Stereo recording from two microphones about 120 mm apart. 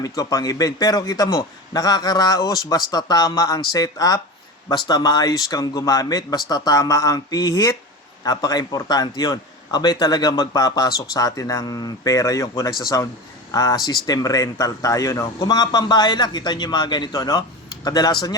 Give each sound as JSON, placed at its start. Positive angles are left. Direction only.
{"t": 0.0, "sound": "a man's voice", "side_deg": 30}